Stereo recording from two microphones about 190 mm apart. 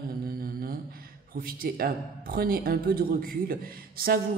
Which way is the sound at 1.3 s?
50° right (ahead or behind).